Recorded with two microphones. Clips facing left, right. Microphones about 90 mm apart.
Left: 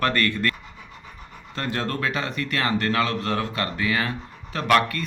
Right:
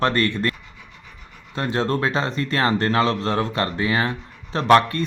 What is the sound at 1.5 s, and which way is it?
Speech, 20° right (ahead or behind).